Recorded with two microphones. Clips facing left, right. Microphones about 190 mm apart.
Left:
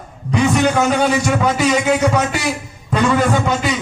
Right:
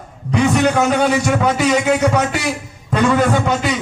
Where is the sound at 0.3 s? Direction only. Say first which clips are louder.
Even; 60° right (ahead or behind).